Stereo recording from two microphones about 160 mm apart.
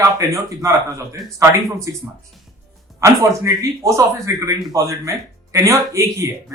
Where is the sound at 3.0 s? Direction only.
20° right (ahead or behind).